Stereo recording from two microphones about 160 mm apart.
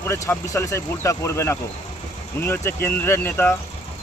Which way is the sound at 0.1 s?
15° left (ahead or behind).